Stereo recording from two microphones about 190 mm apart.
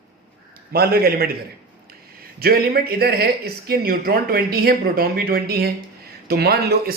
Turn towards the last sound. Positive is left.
turn(degrees=-55)  # may be behind; listen again after turning